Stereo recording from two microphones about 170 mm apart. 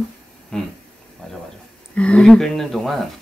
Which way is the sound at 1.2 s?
5° left (ahead or behind).